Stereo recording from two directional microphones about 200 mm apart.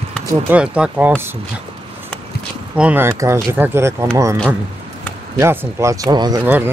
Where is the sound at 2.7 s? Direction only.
10° right (ahead or behind).